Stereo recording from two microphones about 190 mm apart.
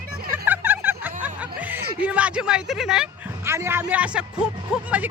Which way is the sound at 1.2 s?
10° right (ahead or behind).